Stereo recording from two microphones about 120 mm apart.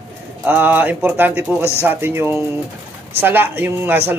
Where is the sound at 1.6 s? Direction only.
20° left (ahead or behind).